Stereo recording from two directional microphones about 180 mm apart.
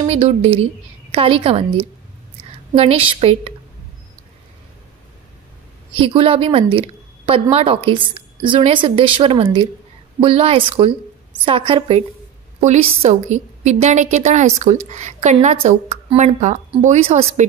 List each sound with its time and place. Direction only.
0.0 s a woman's voice: 35° right (ahead or behind)
5.9 s a woman's voice: 30° right (ahead or behind)